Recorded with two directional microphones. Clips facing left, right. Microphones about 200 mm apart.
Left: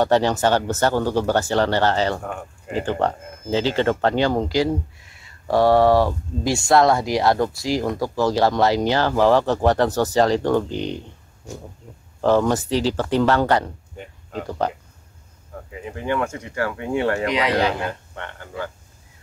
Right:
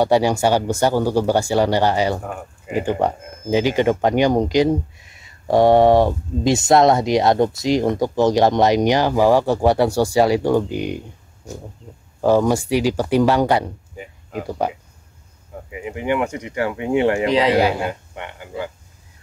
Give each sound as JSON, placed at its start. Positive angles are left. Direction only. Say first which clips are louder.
{"t": 0.0, "sound": "speech", "louder": "right 2 dB", "side_deg": -10}
{"t": 12.2, "sound": "speech", "louder": "right 2 dB", "side_deg": -10}
{"t": 17.3, "sound": "speech", "louder": "right 5 dB", "side_deg": -30}
{"t": 17.6, "sound": "speech", "louder": "right 4 dB", "side_deg": -10}